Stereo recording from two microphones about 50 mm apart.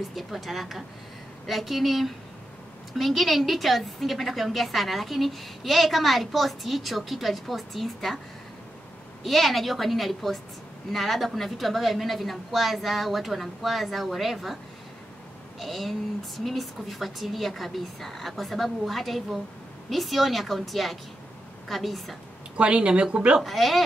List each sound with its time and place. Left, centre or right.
0.1 s a woman's voice: centre
9.2 s a woman's voice: centre
15.6 s a woman's voice: centre
22.6 s speech: centre
23.4 s a woman's voice: centre